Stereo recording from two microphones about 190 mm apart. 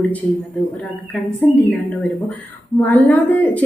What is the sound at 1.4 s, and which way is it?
Speech, 5° left (ahead or behind).